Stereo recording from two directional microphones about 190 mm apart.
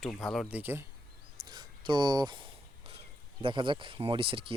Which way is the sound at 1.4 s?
20° right (ahead or behind).